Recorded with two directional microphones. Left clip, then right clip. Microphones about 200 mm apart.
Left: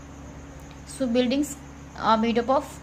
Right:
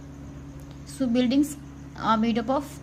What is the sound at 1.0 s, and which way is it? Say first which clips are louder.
A woman's voice: even; 20° right (ahead or behind).